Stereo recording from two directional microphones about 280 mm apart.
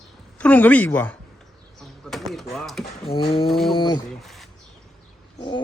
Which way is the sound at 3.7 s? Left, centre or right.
Centre.